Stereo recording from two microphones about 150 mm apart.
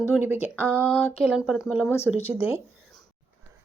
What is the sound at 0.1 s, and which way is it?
A woman's voice, 15° right (ahead or behind).